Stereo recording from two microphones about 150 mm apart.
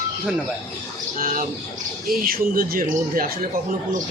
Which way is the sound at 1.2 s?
75° right (ahead or behind).